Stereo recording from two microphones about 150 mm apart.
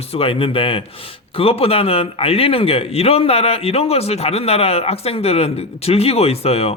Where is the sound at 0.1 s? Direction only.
40° left (ahead or behind).